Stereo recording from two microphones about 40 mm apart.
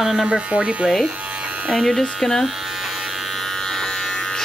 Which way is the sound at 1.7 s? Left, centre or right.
Centre.